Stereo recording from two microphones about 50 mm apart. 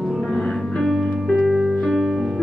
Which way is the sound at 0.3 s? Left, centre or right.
Centre.